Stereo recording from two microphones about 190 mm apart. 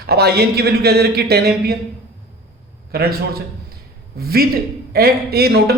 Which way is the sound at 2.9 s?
55° right (ahead or behind).